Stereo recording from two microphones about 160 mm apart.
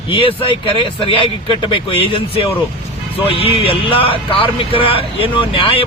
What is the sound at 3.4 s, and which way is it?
Speech, 35° left (ahead or behind).